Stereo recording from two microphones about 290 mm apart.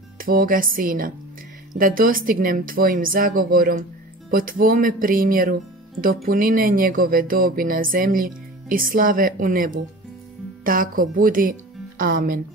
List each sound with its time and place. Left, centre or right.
0.2 s speech: right